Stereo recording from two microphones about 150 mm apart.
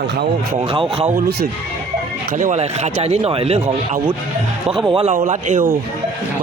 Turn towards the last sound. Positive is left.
turn(degrees=-55)  # may be behind; listen again after turning